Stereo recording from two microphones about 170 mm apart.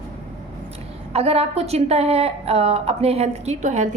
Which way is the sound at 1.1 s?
35° right (ahead or behind).